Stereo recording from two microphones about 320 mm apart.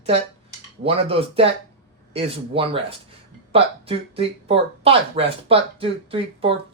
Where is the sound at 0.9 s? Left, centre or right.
Centre.